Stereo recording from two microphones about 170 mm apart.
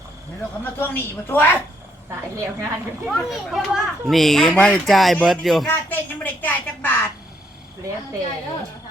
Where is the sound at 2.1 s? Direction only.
15° right (ahead or behind).